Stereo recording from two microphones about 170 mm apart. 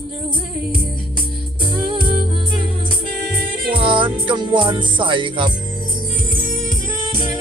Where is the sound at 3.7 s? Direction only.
30° right (ahead or behind).